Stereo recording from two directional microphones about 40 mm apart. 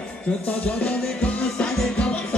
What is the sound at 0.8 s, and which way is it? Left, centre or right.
Music, left.